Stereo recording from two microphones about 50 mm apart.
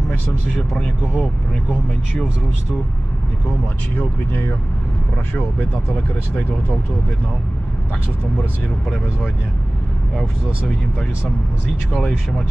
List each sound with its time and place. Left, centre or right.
0.6 s speech: centre
1.0 s speech: left
3.9 s speech: left
10.7 s speech: centre